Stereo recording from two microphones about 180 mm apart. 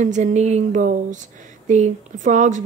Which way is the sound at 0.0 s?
40° right (ahead or behind).